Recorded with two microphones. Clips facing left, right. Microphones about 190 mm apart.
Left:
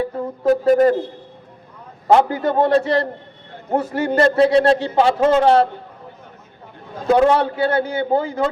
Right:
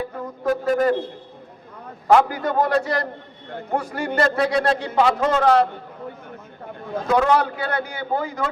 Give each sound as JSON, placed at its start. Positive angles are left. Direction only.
{"t": 0.4, "sound": "a man's voice", "side_deg": 30}
{"t": 2.0, "sound": "a man's voice", "side_deg": 25}
{"t": 7.1, "sound": "a man's voice", "side_deg": 30}